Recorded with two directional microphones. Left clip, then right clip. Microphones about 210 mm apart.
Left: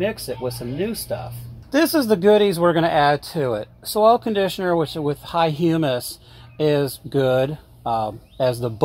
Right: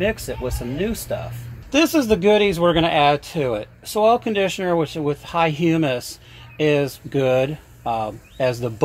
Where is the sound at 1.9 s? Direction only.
30° left (ahead or behind).